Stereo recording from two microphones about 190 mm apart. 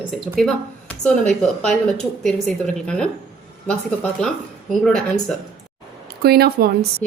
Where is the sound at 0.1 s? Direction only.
Centre (ahead or behind).